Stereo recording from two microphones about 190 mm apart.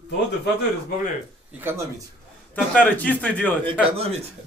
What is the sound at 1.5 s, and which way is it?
Speech, 10° right (ahead or behind).